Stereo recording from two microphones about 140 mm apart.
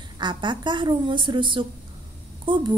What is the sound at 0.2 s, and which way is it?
A woman's voice, 35° right (ahead or behind).